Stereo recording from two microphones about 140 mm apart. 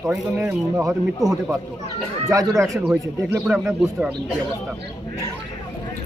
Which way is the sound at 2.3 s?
25° right (ahead or behind).